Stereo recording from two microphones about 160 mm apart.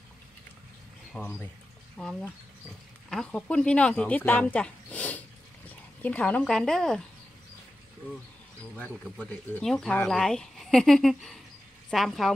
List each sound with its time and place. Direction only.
1.1 s speech: 10° left (ahead or behind)
8.7 s speech: 5° left (ahead or behind)